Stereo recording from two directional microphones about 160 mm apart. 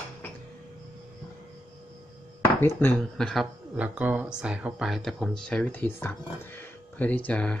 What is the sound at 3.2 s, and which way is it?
Speech, centre (ahead or behind).